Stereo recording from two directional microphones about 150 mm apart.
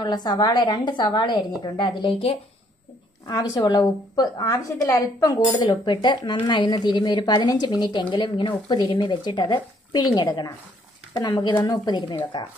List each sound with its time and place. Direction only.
0.0 s a woman's voice: 25° left (ahead or behind)